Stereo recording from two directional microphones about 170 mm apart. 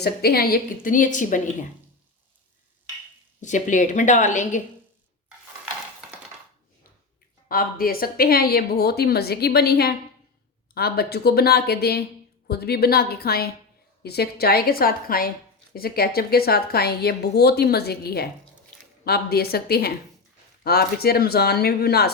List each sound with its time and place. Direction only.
0.0 s a woman's voice: 65° left (ahead or behind); by 1.4 s 50° left (ahead or behind)
3.4 s a woman's voice: 45° left (ahead or behind)
7.4 s a woman's voice: 60° left (ahead or behind)